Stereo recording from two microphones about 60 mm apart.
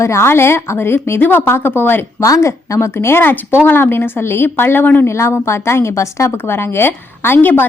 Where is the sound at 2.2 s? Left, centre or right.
Left.